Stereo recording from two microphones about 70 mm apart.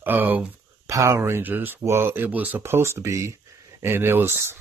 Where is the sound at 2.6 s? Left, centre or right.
Right.